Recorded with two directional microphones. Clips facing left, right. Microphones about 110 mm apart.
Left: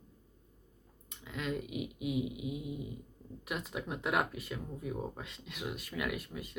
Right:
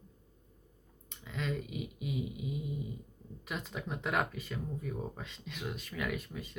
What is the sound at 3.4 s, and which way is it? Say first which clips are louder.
Speech: left 1 dB; 5° left (ahead or behind).